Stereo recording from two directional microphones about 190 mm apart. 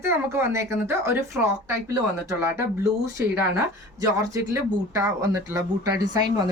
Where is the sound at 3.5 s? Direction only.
15° right (ahead or behind).